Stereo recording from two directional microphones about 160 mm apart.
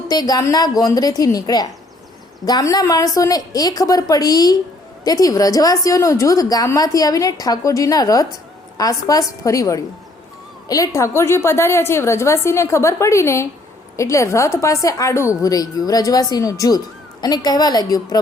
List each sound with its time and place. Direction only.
0.1 s a woman's voice: 25° left (ahead or behind)